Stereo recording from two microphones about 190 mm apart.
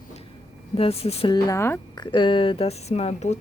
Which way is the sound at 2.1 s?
25° left (ahead or behind).